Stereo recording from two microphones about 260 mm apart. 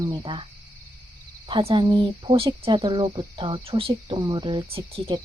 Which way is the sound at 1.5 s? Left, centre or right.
Centre.